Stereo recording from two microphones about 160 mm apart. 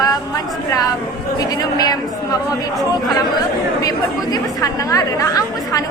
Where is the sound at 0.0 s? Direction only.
25° left (ahead or behind).